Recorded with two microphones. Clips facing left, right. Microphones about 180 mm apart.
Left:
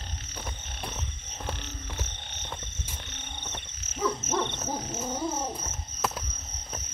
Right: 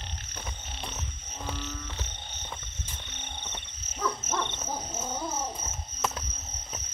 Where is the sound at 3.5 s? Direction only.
15° left (ahead or behind).